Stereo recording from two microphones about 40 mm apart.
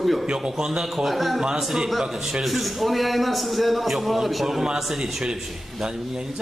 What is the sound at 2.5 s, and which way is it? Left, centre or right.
A man's voice, centre.